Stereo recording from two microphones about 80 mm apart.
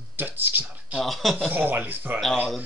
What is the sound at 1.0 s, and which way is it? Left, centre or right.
Speech, centre.